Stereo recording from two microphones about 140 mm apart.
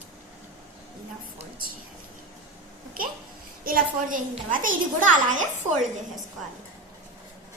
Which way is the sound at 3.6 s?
80° right.